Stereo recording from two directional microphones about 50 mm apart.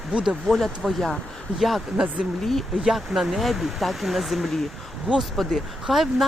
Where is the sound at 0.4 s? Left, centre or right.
Centre.